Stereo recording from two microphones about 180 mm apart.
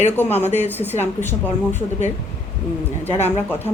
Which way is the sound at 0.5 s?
10° left (ahead or behind).